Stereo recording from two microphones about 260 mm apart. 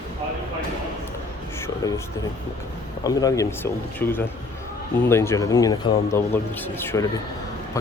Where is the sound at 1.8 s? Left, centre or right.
Centre.